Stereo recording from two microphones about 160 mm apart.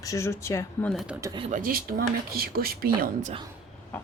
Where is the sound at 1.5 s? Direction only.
65° right (ahead or behind).